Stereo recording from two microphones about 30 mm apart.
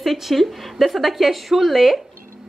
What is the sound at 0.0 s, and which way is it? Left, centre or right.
A woman's voice, centre.